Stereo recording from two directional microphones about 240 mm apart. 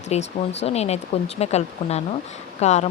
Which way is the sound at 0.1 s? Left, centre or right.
Left.